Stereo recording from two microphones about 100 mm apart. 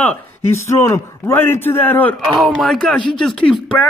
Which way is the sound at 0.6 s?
30° left (ahead or behind).